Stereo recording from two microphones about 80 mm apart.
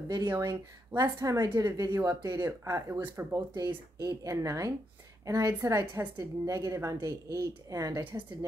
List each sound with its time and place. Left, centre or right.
0.2 s speech: right
0.5 s a woman's voice: right
2.9 s speech: right
3.5 s a woman's voice: right